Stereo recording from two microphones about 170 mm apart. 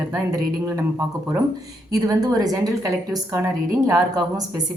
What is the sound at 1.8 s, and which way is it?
A woman's voice, 20° right (ahead or behind).